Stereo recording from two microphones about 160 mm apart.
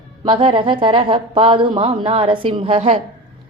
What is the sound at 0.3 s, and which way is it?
A woman's voice, 30° right (ahead or behind).